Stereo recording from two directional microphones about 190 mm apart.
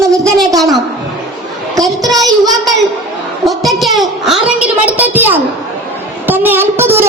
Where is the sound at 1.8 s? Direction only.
Centre (ahead or behind).